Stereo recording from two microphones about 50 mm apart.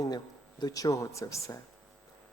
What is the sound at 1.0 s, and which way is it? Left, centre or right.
Speech, left.